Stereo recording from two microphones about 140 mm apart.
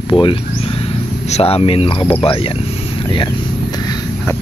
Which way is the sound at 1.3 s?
45° left (ahead or behind).